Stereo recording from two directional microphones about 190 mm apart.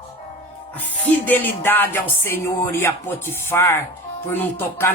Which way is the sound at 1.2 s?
10° left (ahead or behind).